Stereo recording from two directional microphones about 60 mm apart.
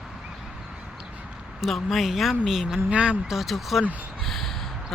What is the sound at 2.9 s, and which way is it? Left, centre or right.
Speech, centre.